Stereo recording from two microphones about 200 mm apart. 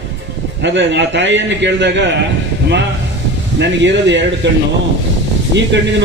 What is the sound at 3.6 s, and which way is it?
Speech, 60° right (ahead or behind).